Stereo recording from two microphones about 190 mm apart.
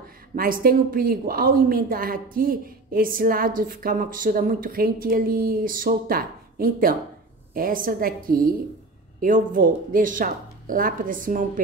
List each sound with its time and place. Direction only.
0.4 s a woman's voice: 50° right (ahead or behind)